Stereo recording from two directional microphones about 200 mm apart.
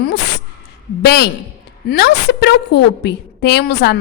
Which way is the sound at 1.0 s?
55° left (ahead or behind).